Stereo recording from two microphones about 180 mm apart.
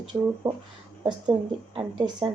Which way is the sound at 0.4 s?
5° right (ahead or behind).